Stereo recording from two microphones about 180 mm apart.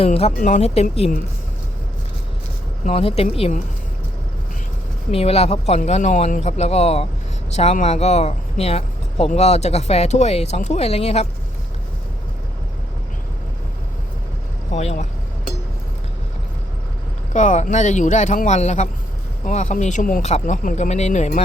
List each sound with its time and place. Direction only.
0.0 s speech: 35° left (ahead or behind)
2.8 s speech: 35° left (ahead or behind)
5.1 s speech: 35° left (ahead or behind)
14.7 s speech: 40° left (ahead or behind)
17.3 s speech: 45° left (ahead or behind)